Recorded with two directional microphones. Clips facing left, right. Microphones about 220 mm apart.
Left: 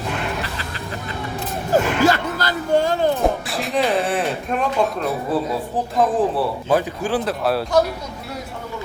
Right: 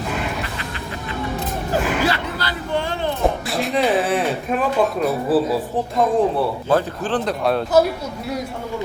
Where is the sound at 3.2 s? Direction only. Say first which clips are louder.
Right 1 dB; centre (ahead or behind).